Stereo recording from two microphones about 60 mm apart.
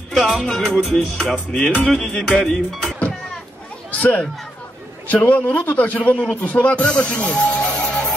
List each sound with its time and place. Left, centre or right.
0.1 s music: centre
1.3 s music: centre
4.0 s a man's voice: left